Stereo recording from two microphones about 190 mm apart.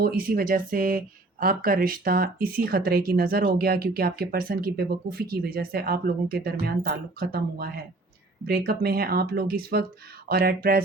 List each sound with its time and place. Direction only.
0.0 s speech: 50° right (ahead or behind)